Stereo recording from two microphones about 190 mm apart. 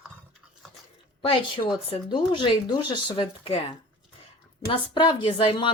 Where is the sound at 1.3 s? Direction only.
25° left (ahead or behind).